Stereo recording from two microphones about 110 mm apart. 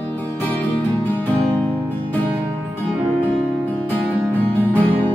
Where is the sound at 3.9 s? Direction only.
15° left (ahead or behind).